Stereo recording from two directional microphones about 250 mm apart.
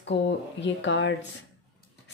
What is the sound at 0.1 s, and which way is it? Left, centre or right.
Speech, left.